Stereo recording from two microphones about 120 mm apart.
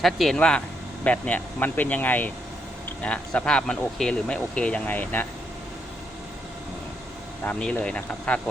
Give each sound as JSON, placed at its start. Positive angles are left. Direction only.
{"t": 0.0, "sound": "speech", "side_deg": 0}
{"t": 7.4, "sound": "speech", "side_deg": 15}